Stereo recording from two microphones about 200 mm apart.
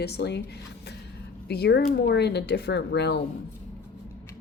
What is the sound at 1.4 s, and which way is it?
Speech, 55° left (ahead or behind).